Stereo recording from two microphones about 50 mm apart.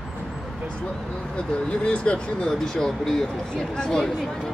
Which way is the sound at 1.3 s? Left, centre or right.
Left.